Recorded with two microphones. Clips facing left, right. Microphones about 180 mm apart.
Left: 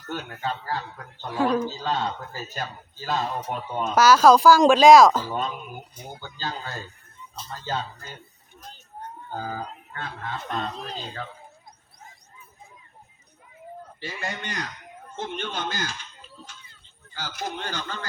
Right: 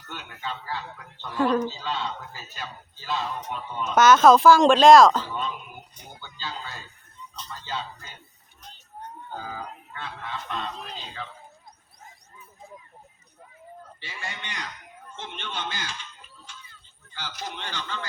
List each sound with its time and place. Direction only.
0.0 s speech: 40° left (ahead or behind)
1.4 s speech: centre (ahead or behind)
1.7 s speech: 45° left (ahead or behind)
3.9 s speech: centre (ahead or behind)
6.1 s speech: 45° left (ahead or behind)
9.3 s speech: 45° left (ahead or behind)
14.0 s speech: 45° left (ahead or behind)
17.2 s speech: 45° left (ahead or behind)